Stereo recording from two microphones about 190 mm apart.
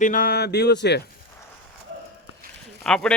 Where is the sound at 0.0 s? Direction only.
45° left (ahead or behind); by 1.0 s 60° left (ahead or behind).